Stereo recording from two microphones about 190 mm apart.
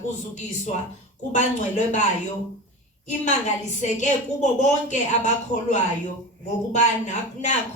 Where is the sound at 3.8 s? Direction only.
40° left (ahead or behind).